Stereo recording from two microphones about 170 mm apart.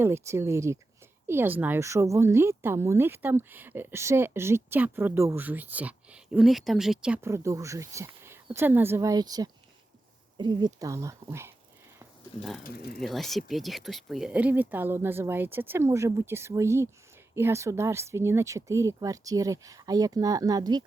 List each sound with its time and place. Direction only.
0.0 s speech: 15° right (ahead or behind)
12.6 s speech: 65° left (ahead or behind)
13.0 s speech: centre (ahead or behind); by 20.8 s 25° right (ahead or behind)